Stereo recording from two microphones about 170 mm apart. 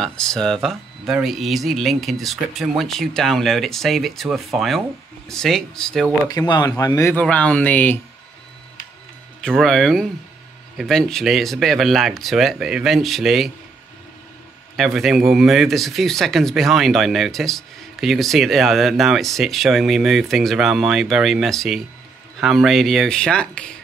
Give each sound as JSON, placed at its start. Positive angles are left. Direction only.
{"t": 0.0, "sound": "speech", "side_deg": 5}
{"t": 6.2, "sound": "speech", "side_deg": 25}
{"t": 9.4, "sound": "speech", "side_deg": 5}
{"t": 14.8, "sound": "speech", "side_deg": 0}